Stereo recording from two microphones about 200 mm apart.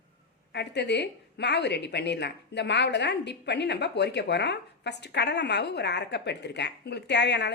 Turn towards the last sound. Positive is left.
turn(degrees=60)  # may be behind; listen again after turning